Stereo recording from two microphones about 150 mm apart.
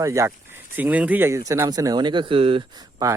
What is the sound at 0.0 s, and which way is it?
Speech, 20° right (ahead or behind).